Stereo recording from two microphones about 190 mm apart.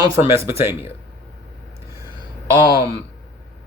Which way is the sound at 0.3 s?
15° right (ahead or behind).